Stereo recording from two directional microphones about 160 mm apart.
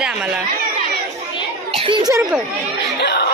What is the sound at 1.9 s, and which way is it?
Speech, 30° right (ahead or behind).